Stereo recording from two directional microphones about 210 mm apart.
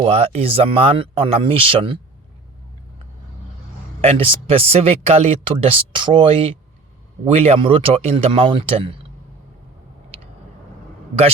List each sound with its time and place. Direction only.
0.0 s speech: 30° right (ahead or behind)
4.0 s speech: 25° right (ahead or behind)